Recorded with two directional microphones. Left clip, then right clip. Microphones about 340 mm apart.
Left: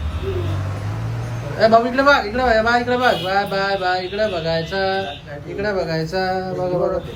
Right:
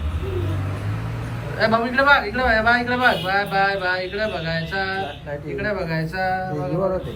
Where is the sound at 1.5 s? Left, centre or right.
Centre.